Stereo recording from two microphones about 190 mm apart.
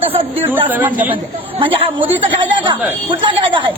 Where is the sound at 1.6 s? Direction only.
25° right (ahead or behind).